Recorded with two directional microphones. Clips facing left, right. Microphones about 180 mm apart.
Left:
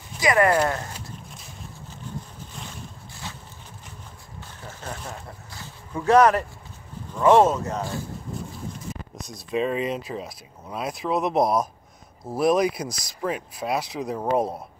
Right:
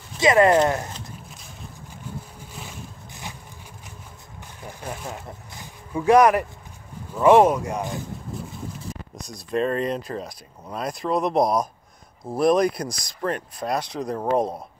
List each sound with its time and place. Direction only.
0.2 s speech: 20° right (ahead or behind)
4.6 s speech: 15° right (ahead or behind)
9.1 s speech: centre (ahead or behind)